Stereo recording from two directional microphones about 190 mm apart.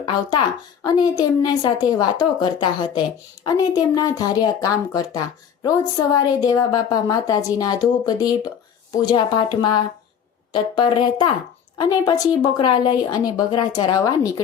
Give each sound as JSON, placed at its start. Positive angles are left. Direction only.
{"t": 0.1, "sound": "a woman's voice", "side_deg": 20}